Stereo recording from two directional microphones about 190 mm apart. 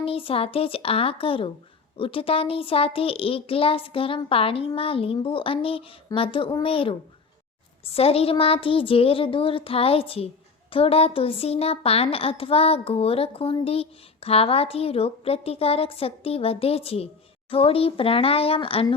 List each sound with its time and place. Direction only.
0.0 s a child's voice: 30° left (ahead or behind)